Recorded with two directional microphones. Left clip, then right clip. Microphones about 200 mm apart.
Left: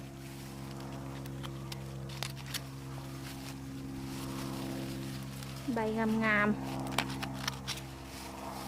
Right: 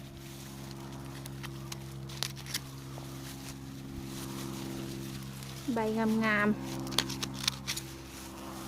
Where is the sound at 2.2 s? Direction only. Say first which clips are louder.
Right 3 dB; 10° right (ahead or behind).